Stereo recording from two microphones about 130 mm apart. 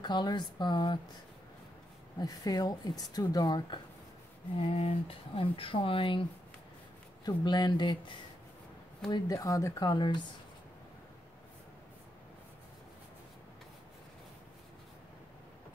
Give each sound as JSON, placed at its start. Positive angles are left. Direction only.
{"t": 0.0, "sound": "speech", "side_deg": 35}
{"t": 2.1, "sound": "speech", "side_deg": 30}
{"t": 4.6, "sound": "speech", "side_deg": 50}
{"t": 7.2, "sound": "speech", "side_deg": 35}
{"t": 9.1, "sound": "speech", "side_deg": 25}